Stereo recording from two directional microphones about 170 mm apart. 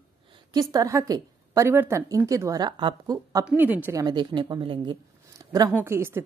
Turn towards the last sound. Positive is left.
turn(degrees=-15)  # may be behind; listen again after turning